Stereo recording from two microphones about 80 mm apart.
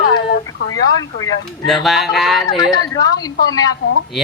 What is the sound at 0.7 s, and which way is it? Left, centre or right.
Speech, left.